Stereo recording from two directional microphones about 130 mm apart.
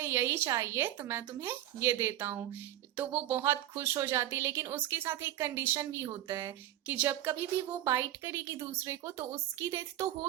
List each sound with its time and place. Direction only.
0.0 s speech: 20° right (ahead or behind)